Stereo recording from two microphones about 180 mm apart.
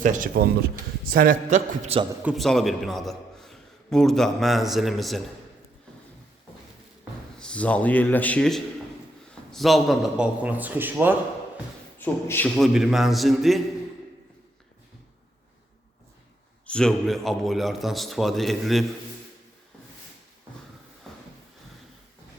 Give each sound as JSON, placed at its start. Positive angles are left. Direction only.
{"t": 0.0, "sound": "a man's voice", "side_deg": -45}
{"t": 2.2, "sound": "a man's voice", "side_deg": 0}
{"t": 7.3, "sound": "a man's voice", "side_deg": 5}
{"t": 11.9, "sound": "a man's voice", "side_deg": 10}
{"t": 16.6, "sound": "a man's voice", "side_deg": 5}